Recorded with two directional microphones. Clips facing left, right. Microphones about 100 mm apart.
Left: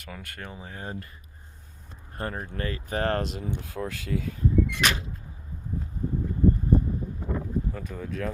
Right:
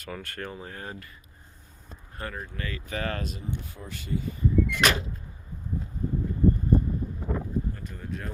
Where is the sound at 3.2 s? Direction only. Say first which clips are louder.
Left 2 dB; 85° left.